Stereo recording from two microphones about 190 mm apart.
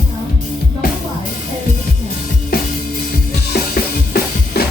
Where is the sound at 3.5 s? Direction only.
55° left (ahead or behind).